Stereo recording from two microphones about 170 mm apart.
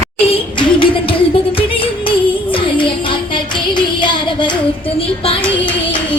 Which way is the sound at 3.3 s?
25° left (ahead or behind).